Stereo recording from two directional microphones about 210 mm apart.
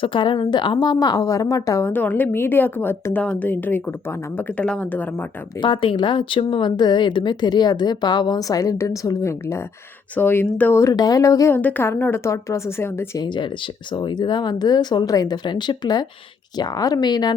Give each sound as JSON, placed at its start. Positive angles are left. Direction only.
{"t": 0.0, "sound": "a woman's voice", "side_deg": 25}
{"t": 5.5, "sound": "a woman's voice", "side_deg": 20}